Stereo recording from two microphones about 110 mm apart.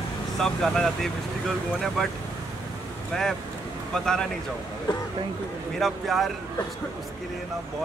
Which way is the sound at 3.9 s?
5° left (ahead or behind).